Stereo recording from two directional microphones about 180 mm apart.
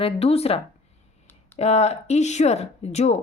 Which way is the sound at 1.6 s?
35° left (ahead or behind).